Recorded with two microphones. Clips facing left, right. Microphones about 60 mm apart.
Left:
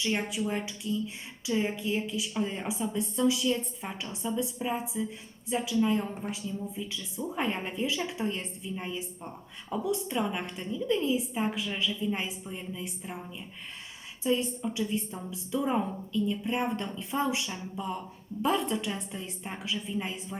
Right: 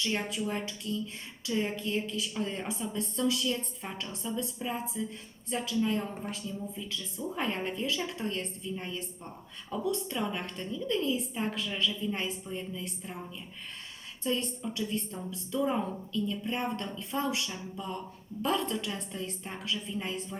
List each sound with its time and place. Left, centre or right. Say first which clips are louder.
0.0 s a woman's voice: left 2 dB; centre
14.3 s a woman's voice: left 4 dB; centre